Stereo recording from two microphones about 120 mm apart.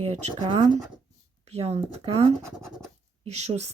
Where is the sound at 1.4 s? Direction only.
60° right (ahead or behind).